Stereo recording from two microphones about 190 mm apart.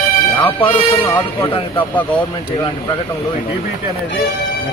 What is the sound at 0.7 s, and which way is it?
Speech, 10° left (ahead or behind).